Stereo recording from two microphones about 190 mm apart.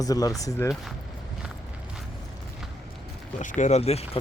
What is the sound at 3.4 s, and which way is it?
Speech, 40° left (ahead or behind).